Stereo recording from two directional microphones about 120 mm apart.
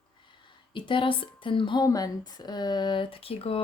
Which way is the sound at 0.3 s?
40° left (ahead or behind).